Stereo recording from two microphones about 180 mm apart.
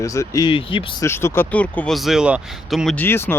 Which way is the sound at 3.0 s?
10° left (ahead or behind).